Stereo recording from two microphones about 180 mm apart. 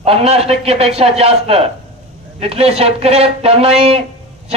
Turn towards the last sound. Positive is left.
turn(degrees=-35)  # may be behind; listen again after turning